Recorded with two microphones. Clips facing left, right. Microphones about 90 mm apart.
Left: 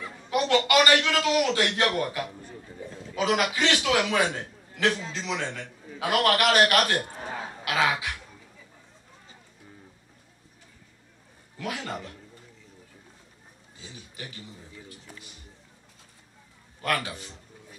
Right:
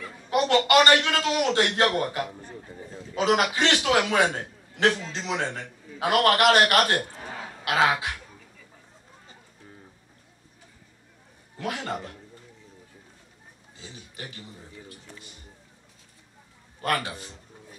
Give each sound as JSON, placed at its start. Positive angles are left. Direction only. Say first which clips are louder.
{"t": 0.3, "sound": "a man's voice", "louder": "right 2 dB", "side_deg": -40}
{"t": 11.5, "sound": "a man's voice", "louder": "right 2 dB", "side_deg": -35}
{"t": 13.7, "sound": "a man's voice", "louder": "right 1 dB", "side_deg": -40}
{"t": 16.8, "sound": "a man's voice", "louder": "right 1 dB", "side_deg": -40}